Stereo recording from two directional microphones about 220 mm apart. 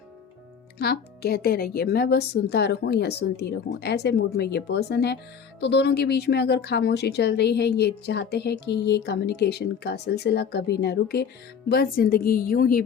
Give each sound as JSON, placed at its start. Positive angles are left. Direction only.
{"t": 0.8, "sound": "a woman's voice", "side_deg": 45}